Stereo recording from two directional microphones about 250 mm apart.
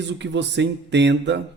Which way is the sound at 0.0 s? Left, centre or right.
Right.